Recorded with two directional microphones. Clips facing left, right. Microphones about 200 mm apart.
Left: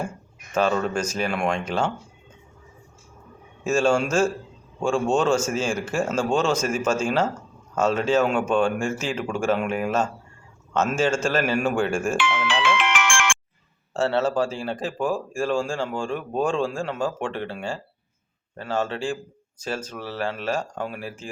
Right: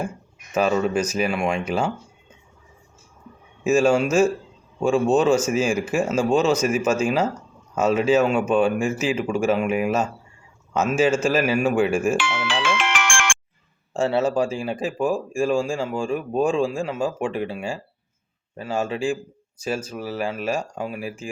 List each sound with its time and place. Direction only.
0.5 s speech: 5° right (ahead or behind)
3.6 s speech: 5° right (ahead or behind)
12.1 s music: 40° right (ahead or behind)
13.9 s speech: 10° right (ahead or behind)